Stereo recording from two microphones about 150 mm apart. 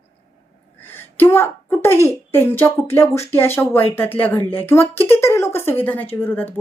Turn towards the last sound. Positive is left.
turn(degrees=10)  # may be behind; listen again after turning